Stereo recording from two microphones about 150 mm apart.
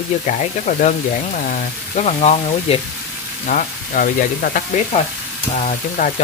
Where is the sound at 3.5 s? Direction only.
60° left (ahead or behind).